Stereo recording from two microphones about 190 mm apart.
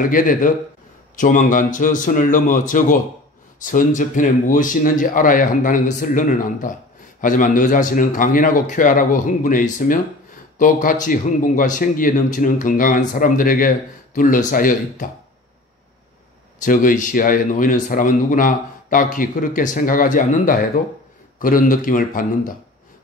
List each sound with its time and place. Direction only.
0.0 s speech: 45° left (ahead or behind)
16.5 s speech: 45° left (ahead or behind)